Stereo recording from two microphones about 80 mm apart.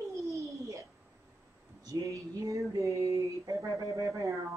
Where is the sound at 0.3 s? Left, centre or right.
Right.